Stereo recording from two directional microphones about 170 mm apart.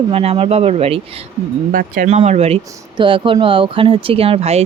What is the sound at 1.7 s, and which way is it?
Speech, 55° right (ahead or behind).